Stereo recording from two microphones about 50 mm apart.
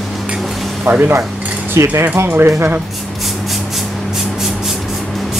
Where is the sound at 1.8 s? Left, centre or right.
Right.